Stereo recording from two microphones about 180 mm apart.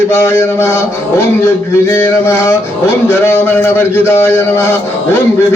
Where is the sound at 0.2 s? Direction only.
15° left (ahead or behind).